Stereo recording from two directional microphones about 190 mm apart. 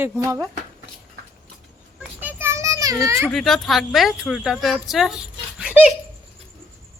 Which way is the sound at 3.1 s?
15° right (ahead or behind).